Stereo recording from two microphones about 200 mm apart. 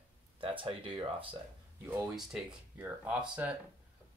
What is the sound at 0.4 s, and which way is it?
Speech, 25° right (ahead or behind).